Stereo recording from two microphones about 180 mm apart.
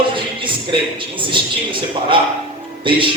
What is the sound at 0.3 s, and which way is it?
A man's voice, 30° right (ahead or behind).